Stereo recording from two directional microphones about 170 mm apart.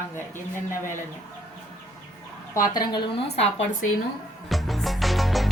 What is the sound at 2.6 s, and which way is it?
Speech, 25° left (ahead or behind).